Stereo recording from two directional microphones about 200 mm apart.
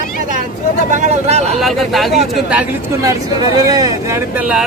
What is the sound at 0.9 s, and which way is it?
Speech, 35° right (ahead or behind).